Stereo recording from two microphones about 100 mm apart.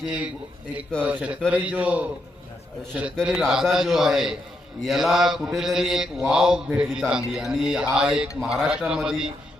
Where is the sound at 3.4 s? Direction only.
5° right (ahead or behind).